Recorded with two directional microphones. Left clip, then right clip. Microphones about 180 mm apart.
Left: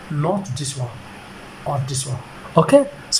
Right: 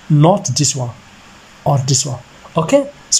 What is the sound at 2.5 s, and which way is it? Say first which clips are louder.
Speech: even; 5° right (ahead or behind).